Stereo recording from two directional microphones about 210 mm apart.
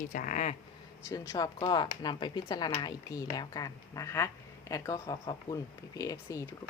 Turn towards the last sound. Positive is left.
turn(degrees=15)  # may be behind; listen again after turning